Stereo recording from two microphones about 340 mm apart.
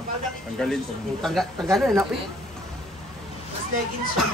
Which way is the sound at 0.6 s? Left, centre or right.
Centre.